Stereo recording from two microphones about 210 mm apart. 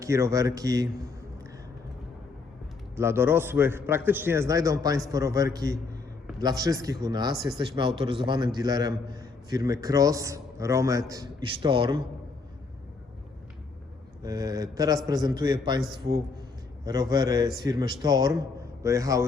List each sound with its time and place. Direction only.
0.0 s a man's voice: 15° right (ahead or behind)
2.9 s a man's voice: 10° right (ahead or behind)
14.2 s a man's voice: 15° right (ahead or behind)
16.8 s a man's voice: 20° right (ahead or behind)